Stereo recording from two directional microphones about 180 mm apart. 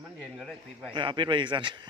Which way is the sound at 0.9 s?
25° right (ahead or behind).